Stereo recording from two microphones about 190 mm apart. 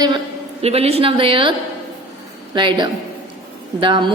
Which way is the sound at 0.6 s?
30° right (ahead or behind).